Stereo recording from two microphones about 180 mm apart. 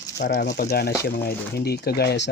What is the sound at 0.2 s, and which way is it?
Speech, 65° left (ahead or behind).